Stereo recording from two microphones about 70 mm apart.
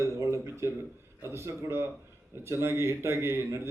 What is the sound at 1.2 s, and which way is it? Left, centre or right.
A man's voice, right.